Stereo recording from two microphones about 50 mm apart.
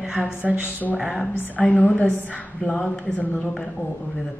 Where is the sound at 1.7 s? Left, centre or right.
Left.